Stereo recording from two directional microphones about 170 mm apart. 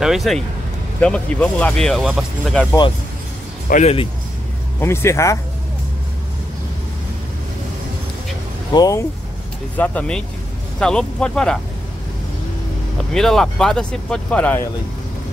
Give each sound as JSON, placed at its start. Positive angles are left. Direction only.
{"t": 0.0, "sound": "speech", "side_deg": 0}
{"t": 3.8, "sound": "speech", "side_deg": 35}
{"t": 4.7, "sound": "speech", "side_deg": 15}
{"t": 8.7, "sound": "speech", "side_deg": 20}
{"t": 9.8, "sound": "speech", "side_deg": 5}
{"t": 13.1, "sound": "speech", "side_deg": 0}